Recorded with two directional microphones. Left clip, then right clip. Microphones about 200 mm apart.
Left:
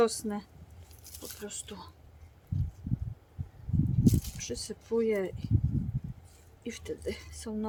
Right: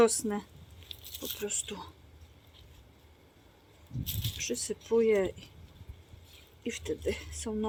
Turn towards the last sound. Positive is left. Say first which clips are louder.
# right 3 dB
turn(degrees=-30)  # may be behind; listen again after turning